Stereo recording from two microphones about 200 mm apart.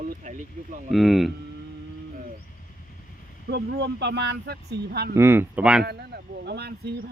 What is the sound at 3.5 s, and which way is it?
Speech, 55° right (ahead or behind).